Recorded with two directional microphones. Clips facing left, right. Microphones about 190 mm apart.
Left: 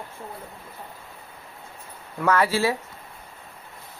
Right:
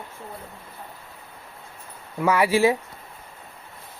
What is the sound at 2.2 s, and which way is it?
Speech, 10° right (ahead or behind).